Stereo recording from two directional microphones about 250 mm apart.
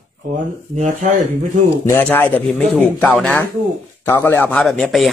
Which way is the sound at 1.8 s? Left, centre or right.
Centre.